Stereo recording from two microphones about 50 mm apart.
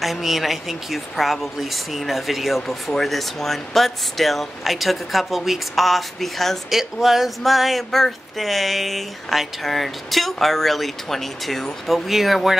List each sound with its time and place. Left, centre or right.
0.0 s speech: centre